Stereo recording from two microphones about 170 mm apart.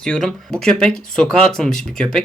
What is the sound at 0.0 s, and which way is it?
Speech, 5° left (ahead or behind).